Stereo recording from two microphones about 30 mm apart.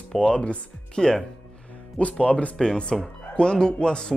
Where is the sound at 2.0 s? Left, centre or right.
Left.